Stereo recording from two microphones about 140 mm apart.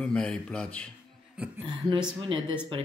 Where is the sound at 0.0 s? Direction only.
5° left (ahead or behind).